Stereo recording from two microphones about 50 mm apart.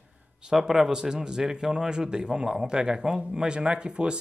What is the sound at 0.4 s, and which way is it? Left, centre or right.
A man's voice, centre.